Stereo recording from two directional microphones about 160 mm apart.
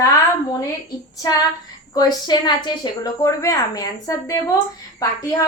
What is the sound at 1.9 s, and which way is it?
A woman's voice, 25° left (ahead or behind).